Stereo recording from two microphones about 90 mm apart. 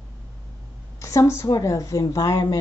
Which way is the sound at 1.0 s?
35° left (ahead or behind).